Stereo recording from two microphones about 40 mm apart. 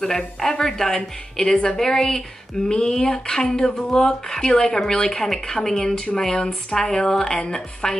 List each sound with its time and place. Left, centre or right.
0.0 s speech: centre